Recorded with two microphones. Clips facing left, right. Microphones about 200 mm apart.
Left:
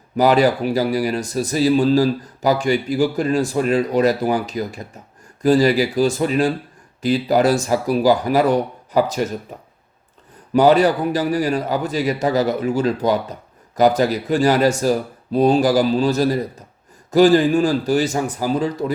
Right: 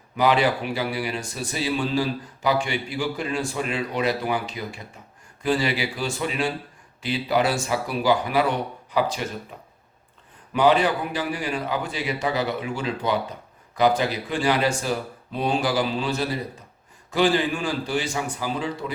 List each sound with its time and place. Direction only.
0.2 s a man's voice: 40° left (ahead or behind)